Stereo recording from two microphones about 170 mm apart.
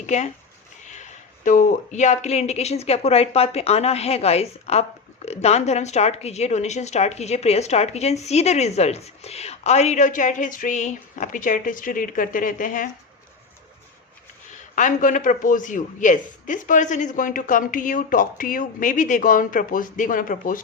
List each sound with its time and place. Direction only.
0.0 s speech: 45° left (ahead or behind)
1.5 s speech: 50° left (ahead or behind)
14.8 s a man's voice: 50° left (ahead or behind)